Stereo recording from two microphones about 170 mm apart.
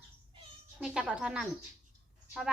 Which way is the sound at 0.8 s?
5° right (ahead or behind).